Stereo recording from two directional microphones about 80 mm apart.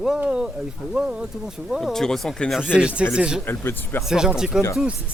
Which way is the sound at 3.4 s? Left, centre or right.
Left.